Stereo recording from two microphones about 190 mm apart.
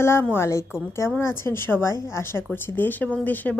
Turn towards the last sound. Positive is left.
turn(degrees=10)  # may be behind; listen again after turning